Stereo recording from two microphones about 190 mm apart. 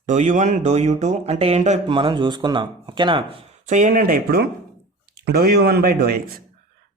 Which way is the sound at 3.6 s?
40° right (ahead or behind).